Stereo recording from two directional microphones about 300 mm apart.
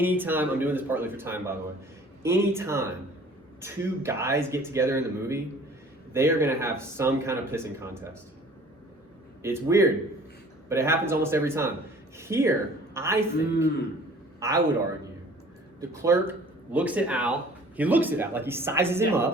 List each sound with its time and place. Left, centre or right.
0.0 s speech: centre
9.4 s a man's voice: centre
15.8 s speech: centre